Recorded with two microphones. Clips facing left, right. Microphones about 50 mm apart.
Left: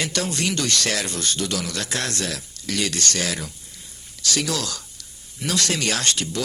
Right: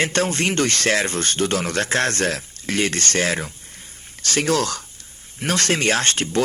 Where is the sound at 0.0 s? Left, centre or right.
Right.